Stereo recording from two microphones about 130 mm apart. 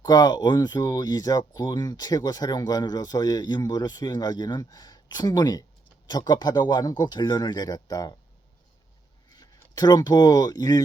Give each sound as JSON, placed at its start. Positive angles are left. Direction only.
{"t": 0.0, "sound": "speech", "side_deg": 30}
{"t": 9.3, "sound": "speech", "side_deg": 30}